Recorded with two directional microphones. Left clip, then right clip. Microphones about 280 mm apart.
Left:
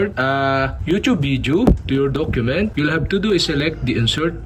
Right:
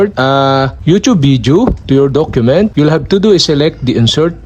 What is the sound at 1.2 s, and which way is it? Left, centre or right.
Speech, centre.